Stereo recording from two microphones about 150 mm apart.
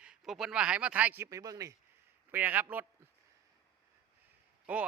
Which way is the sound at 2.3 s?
10° right (ahead or behind).